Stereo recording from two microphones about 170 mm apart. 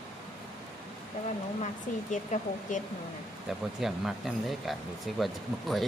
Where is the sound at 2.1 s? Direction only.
45° left (ahead or behind).